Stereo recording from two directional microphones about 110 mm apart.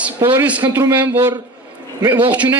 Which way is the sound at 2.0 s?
40° right (ahead or behind).